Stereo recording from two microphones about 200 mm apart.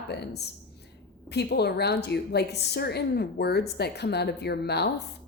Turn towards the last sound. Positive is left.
turn(degrees=55)  # may be behind; listen again after turning